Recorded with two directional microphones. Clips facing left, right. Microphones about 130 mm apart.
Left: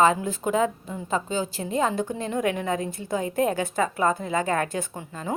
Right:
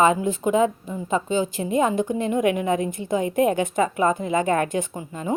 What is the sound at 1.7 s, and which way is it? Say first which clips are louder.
A woman's voice: right 4 dB; 15° right (ahead or behind).